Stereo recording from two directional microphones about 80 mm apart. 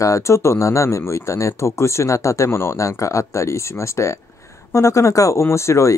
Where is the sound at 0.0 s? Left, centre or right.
Left.